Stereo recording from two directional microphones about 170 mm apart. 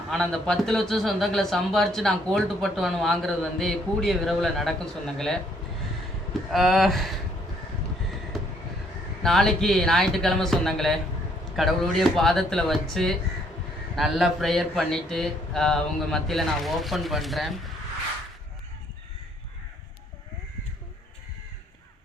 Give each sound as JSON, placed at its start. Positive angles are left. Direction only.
{"t": 0.1, "sound": "a man's voice", "side_deg": 5}
{"t": 6.5, "sound": "a man's voice", "side_deg": 0}
{"t": 9.2, "sound": "a man's voice", "side_deg": 0}